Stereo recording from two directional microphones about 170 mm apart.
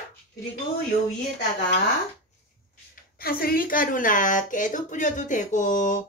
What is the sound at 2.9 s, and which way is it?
Speech, 60° left (ahead or behind).